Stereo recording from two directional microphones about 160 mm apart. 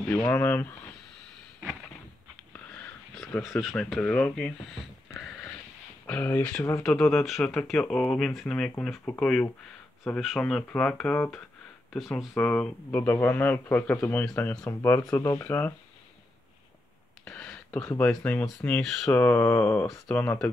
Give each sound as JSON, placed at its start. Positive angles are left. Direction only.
{"t": 0.1, "sound": "speech", "side_deg": 10}
{"t": 2.5, "sound": "sniff", "side_deg": 10}
{"t": 3.4, "sound": "speech", "side_deg": 0}
{"t": 5.1, "sound": "sniff", "side_deg": 0}
{"t": 6.0, "sound": "speech", "side_deg": 10}
{"t": 14.6, "sound": "speech", "side_deg": 20}
{"t": 17.2, "sound": "speech", "side_deg": 5}